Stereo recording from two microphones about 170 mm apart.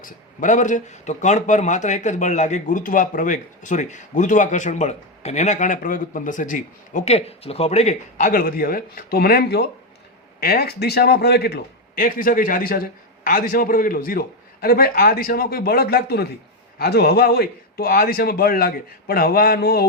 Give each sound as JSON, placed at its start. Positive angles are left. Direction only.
{"t": 0.0, "sound": "a man's voice", "side_deg": 50}
{"t": 8.3, "sound": "a man's voice", "side_deg": 60}